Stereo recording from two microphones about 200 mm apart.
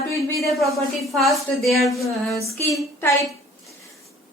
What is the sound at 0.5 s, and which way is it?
A woman's voice, centre (ahead or behind).